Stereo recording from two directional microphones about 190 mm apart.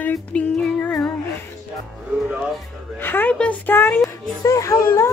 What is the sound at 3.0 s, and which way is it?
Speech, 10° left (ahead or behind).